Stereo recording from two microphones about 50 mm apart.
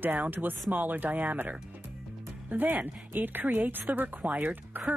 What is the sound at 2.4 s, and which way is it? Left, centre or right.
Speech, right.